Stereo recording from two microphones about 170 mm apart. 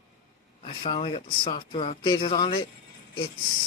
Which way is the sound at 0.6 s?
30° left (ahead or behind).